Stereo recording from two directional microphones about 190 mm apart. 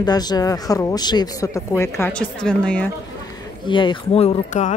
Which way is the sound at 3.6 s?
25° left (ahead or behind).